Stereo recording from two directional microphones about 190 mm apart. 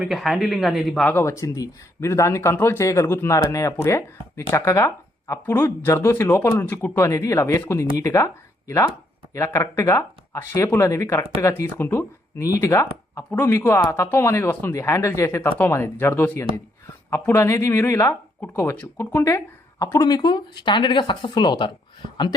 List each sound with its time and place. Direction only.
0.0 s speech: centre (ahead or behind); by 21.7 s 25° left (ahead or behind)